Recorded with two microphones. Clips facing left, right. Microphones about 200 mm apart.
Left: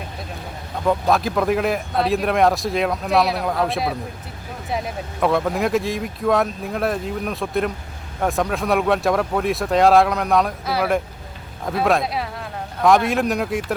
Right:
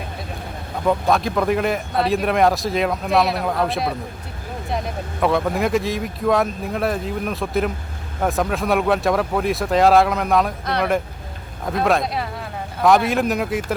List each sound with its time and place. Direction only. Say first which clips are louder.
0.9 s speech: even; centre (ahead or behind)